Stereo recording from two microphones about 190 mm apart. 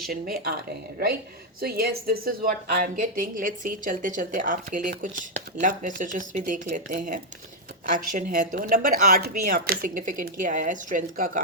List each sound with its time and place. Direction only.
0.1 s a woman's voice: 50° right (ahead or behind)